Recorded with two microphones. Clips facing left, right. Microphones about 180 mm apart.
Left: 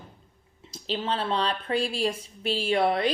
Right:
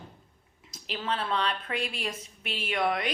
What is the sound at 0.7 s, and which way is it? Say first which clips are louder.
A woman's voice: left 4 dB; 30° left (ahead or behind).